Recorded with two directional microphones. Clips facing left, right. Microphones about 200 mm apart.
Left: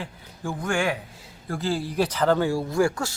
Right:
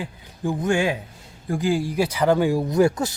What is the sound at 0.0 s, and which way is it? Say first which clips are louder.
Speech: right 6 dB; 20° right (ahead or behind).